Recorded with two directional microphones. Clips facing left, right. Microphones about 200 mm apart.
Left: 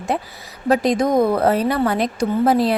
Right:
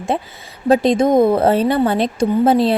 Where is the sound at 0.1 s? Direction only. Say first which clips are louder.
Even; 25° right (ahead or behind).